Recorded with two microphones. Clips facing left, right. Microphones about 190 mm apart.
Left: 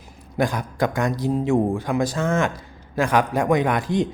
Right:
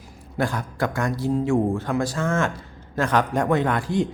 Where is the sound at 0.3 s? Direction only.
15° left (ahead or behind).